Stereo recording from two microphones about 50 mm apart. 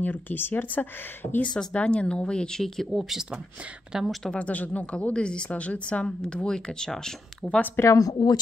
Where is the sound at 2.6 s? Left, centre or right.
Centre.